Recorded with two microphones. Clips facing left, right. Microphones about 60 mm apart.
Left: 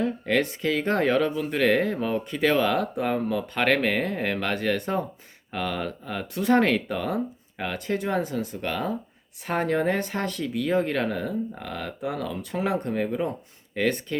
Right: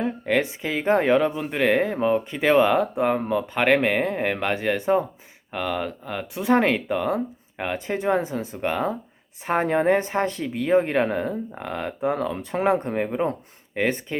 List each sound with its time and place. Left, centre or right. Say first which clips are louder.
0.0 s speech: right 1 dB; centre